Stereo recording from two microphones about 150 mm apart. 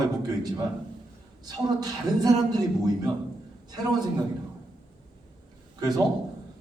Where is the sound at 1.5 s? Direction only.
25° right (ahead or behind).